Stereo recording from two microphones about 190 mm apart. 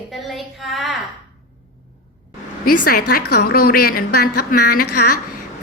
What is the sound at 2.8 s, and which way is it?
A woman's voice, 50° left (ahead or behind).